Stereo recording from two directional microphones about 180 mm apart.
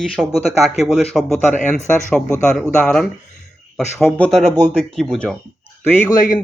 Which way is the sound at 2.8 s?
Centre (ahead or behind).